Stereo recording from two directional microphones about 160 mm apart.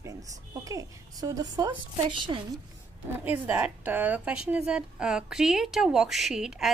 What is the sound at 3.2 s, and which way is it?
A woman's voice, 10° right (ahead or behind).